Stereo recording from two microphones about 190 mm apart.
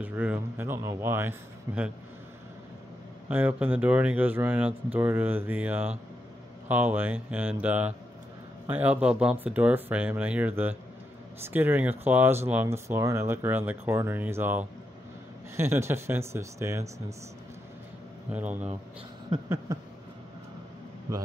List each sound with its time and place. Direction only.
0.0 s speech: 10° right (ahead or behind)
3.3 s speech: 10° right (ahead or behind)
18.3 s speech: 10° right (ahead or behind)
19.7 s speech: 20° right (ahead or behind)